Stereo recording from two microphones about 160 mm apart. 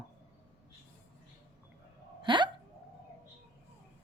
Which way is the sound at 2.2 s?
30° right (ahead or behind).